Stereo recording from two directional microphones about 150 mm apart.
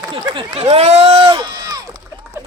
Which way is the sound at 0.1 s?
35° right (ahead or behind).